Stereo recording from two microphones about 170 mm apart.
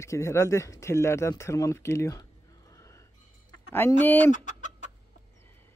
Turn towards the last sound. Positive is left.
turn(degrees=45)  # may be behind; listen again after turning